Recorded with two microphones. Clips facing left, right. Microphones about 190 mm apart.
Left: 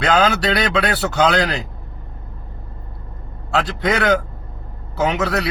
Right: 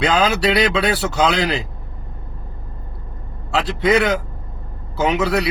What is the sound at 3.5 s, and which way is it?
Speech, centre (ahead or behind).